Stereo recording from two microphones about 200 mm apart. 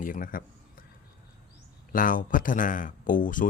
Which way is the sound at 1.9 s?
40° left (ahead or behind).